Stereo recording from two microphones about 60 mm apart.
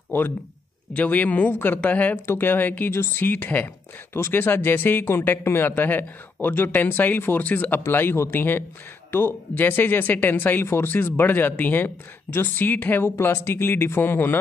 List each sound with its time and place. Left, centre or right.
0.9 s speech: left
1.5 s speech: left